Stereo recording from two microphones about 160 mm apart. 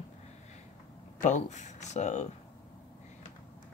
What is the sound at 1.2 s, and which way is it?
Speech, 50° left (ahead or behind).